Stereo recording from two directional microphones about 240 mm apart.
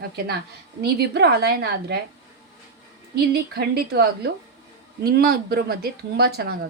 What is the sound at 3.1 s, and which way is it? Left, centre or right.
A woman's voice, right.